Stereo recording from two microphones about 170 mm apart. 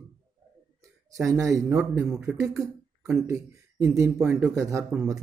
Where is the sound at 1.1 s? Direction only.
20° right (ahead or behind).